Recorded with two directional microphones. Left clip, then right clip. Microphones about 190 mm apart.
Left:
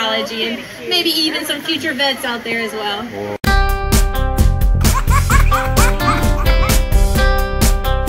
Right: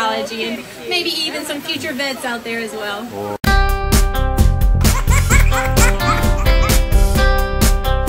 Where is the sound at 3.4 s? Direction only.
Centre (ahead or behind).